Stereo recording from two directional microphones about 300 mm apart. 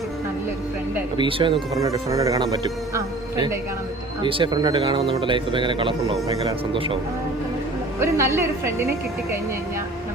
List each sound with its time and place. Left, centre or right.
0.9 s speech: centre
7.9 s speech: centre